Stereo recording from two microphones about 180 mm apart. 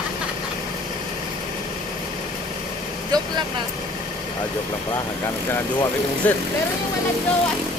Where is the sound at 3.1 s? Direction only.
20° right (ahead or behind).